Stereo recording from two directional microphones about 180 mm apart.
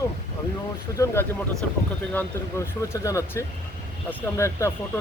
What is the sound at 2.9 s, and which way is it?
Speech, 15° left (ahead or behind).